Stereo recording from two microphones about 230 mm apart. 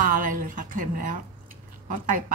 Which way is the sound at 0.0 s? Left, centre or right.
Right.